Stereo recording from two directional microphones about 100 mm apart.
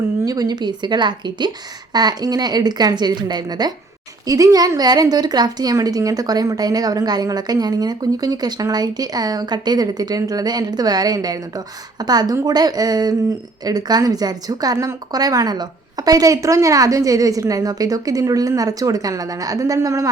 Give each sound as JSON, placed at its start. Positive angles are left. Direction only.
{"t": 0.3, "sound": "a woman's voice", "side_deg": -40}